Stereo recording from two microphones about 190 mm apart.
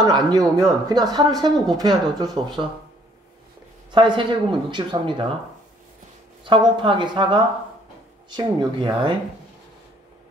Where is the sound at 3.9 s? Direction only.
25° right (ahead or behind).